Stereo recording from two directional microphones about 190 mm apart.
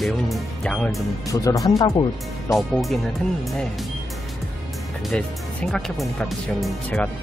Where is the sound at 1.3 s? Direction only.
15° left (ahead or behind).